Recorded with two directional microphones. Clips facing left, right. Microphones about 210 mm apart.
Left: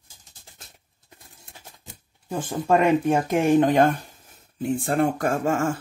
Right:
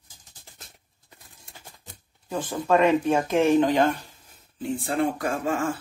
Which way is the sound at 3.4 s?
50° left (ahead or behind).